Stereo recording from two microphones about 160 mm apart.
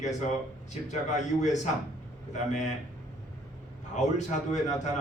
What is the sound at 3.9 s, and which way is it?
Speech, 45° left (ahead or behind).